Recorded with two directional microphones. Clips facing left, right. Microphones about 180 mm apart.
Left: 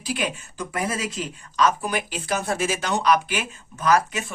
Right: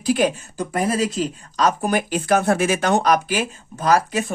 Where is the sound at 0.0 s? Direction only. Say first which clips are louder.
Right 9 dB; 45° right (ahead or behind).